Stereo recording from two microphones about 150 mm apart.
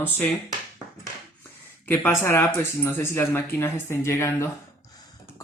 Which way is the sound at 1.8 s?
15° left (ahead or behind).